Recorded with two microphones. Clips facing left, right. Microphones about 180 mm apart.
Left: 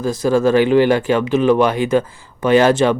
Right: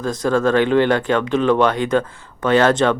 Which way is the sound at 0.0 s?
10° left (ahead or behind).